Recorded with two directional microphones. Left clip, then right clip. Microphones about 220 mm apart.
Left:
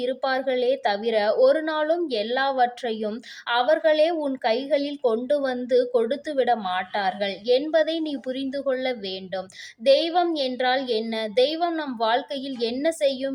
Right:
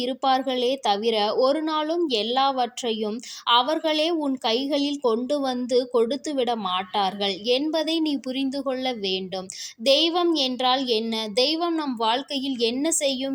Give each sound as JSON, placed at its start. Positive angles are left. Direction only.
{"t": 0.0, "sound": "a woman's voice", "side_deg": -20}